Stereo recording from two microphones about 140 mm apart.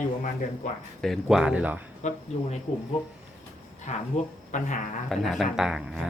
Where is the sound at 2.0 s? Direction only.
60° left (ahead or behind).